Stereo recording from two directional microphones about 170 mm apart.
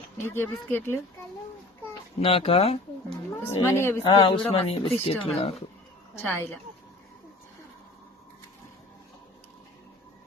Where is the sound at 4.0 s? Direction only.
30° left (ahead or behind).